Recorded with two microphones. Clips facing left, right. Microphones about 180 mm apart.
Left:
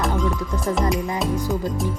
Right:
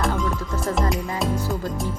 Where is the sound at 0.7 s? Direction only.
Centre (ahead or behind).